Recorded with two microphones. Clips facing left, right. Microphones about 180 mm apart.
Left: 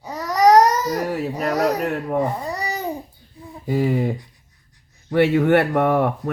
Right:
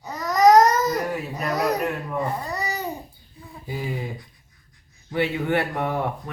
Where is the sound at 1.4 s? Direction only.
35° left (ahead or behind).